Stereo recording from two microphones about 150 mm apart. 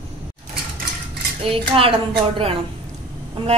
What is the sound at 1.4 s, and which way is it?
A woman's voice, 40° right (ahead or behind).